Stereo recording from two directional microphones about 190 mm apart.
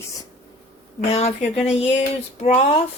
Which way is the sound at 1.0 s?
35° left (ahead or behind).